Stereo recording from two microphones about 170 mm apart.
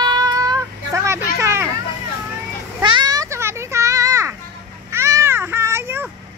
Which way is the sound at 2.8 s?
25° right (ahead or behind).